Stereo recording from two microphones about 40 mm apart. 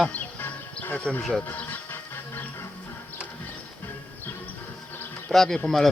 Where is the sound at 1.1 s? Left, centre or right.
Centre.